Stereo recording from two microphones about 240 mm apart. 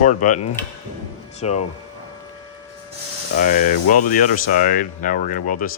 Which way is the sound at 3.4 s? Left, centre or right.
Left.